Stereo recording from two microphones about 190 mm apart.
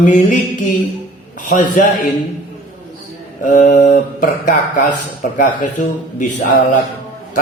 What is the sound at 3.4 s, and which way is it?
Speech, 40° left (ahead or behind).